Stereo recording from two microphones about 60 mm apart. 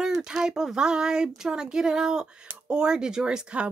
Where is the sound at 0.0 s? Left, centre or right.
Centre.